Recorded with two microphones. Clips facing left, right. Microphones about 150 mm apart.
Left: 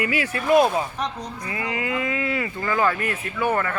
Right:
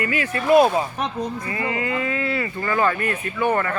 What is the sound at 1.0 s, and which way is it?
Speech, 55° right (ahead or behind).